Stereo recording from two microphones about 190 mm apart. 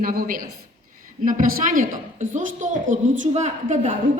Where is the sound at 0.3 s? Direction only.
45° right (ahead or behind).